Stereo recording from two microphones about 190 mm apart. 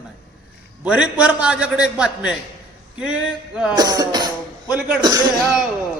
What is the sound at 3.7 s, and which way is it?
Speech, 20° right (ahead or behind).